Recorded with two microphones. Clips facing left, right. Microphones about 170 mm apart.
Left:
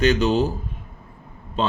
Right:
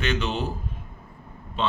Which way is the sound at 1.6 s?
40° left (ahead or behind).